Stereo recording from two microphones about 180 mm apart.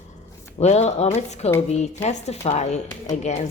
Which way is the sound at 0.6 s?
40° left (ahead or behind).